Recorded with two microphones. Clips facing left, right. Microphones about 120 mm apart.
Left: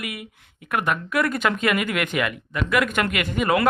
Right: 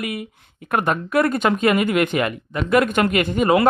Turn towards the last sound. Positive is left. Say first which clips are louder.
# right 4 dB
turn(degrees=-25)  # may be behind; listen again after turning